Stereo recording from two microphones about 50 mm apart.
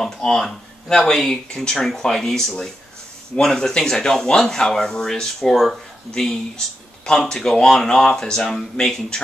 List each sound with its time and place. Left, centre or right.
0.0 s speech: centre